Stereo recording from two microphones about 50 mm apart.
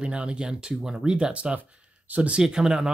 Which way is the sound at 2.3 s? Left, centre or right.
Centre.